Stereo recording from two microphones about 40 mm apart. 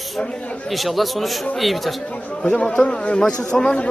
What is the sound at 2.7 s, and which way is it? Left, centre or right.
A man's voice, centre.